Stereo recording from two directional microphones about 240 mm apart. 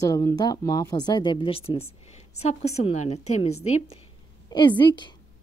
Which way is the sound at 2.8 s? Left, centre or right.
Left.